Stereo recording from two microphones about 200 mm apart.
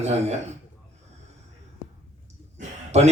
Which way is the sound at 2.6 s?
35° right (ahead or behind).